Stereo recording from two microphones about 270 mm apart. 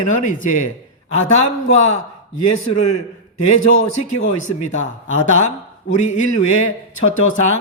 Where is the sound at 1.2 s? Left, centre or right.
Left.